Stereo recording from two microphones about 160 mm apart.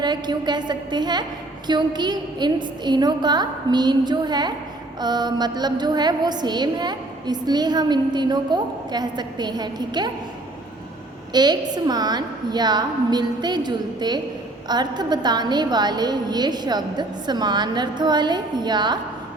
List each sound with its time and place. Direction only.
0.0 s a woman's voice: 25° right (ahead or behind)
11.3 s a woman's voice: 25° right (ahead or behind)